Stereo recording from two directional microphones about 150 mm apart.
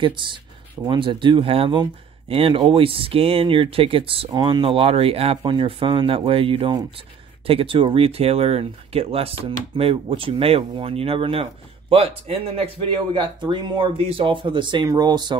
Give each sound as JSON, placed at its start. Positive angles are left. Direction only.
{"t": 0.0, "sound": "speech", "side_deg": -35}
{"t": 4.6, "sound": "speech", "side_deg": -40}